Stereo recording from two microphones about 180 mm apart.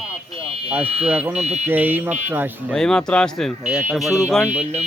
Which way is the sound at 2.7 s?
5° left (ahead or behind).